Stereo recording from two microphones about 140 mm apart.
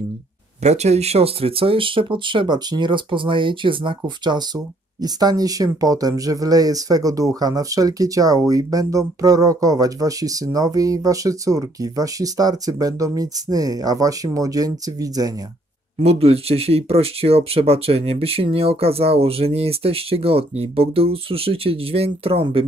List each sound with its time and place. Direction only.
0.6 s speech: 50° right (ahead or behind); by 15.3 s 25° right (ahead or behind)
16.0 s speech: 45° right (ahead or behind)